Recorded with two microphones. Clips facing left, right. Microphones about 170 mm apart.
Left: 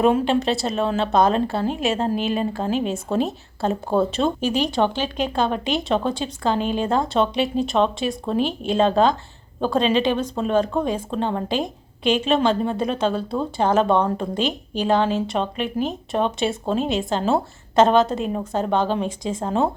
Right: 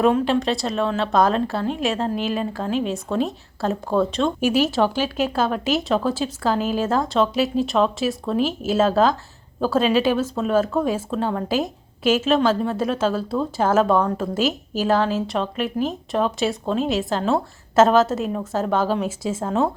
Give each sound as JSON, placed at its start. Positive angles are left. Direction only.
{"t": 0.0, "sound": "a woman's voice", "side_deg": 0}
{"t": 4.4, "sound": "a woman's voice", "side_deg": -10}